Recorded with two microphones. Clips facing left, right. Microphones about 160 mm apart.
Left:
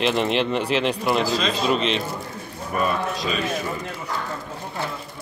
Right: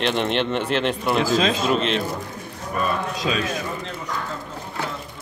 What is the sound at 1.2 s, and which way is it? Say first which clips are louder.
Speech: right 3 dB; 50° right (ahead or behind).